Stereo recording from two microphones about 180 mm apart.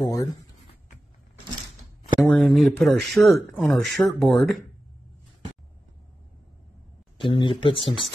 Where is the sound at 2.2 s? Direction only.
Centre (ahead or behind).